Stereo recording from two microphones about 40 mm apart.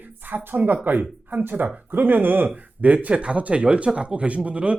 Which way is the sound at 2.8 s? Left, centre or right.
Right.